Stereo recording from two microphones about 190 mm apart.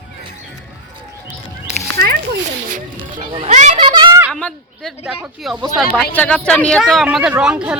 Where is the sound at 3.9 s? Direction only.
20° right (ahead or behind).